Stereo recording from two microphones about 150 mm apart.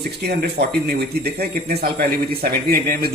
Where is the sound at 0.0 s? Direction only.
90° right.